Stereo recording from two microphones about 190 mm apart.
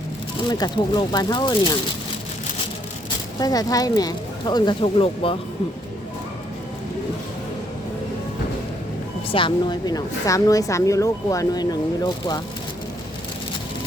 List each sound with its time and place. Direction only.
0.4 s a woman's voice: 20° left (ahead or behind)
3.4 s a woman's voice: 20° left (ahead or behind)
9.3 s a woman's voice: 25° left (ahead or behind)